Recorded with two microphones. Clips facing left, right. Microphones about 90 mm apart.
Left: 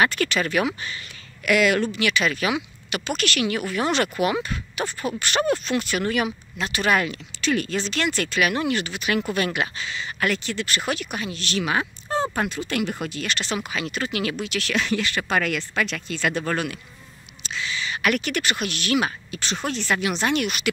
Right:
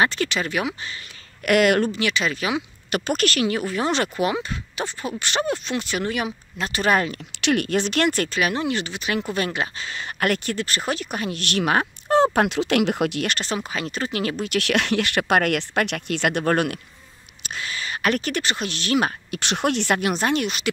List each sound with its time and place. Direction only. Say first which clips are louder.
0.0 s speech: even; 25° right (ahead or behind)
1.4 s speech: right 2 dB; 50° right (ahead or behind)
1.9 s speech: left 1 dB; 30° right (ahead or behind)
2.9 s speech: right 4 dB; 45° right (ahead or behind); by 6.3 s 20° right (ahead or behind)
6.6 s speech: right 1 dB; 35° right (ahead or behind)
7.3 s speech: right 3 dB; 65° right (ahead or behind); by 9.8 s 30° right (ahead or behind)
9.8 s speech: right 2 dB; 50° right (ahead or behind); by 11.1 s 35° right (ahead or behind)
11.1 s speech: right 2 dB; 55° right (ahead or behind); by 13.3 s 75° right (ahead or behind)
13.3 s speech: right 1 dB; 40° right (ahead or behind)
14.4 s speech: right 3 dB; 60° right (ahead or behind); by 19.0 s 30° right (ahead or behind)
19.3 s speech: right 5 dB; 65° right (ahead or behind); by 20.4 s 40° right (ahead or behind)
20.4 s speech: even; 25° right (ahead or behind)